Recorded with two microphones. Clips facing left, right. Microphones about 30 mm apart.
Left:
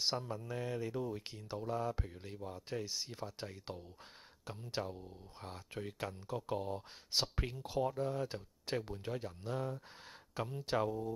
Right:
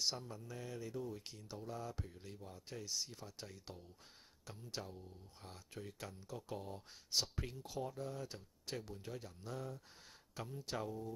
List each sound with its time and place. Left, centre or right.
0.0 s speech: left